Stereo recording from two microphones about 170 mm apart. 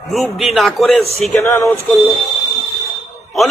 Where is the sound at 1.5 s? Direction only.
15° left (ahead or behind).